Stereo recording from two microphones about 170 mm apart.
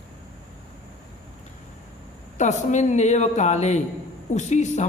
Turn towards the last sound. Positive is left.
turn(degrees=45)  # may be behind; listen again after turning